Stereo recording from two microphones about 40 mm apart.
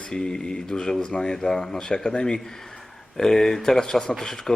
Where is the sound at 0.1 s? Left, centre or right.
Centre.